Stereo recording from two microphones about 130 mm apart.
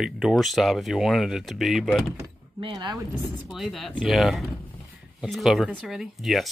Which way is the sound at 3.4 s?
Centre (ahead or behind).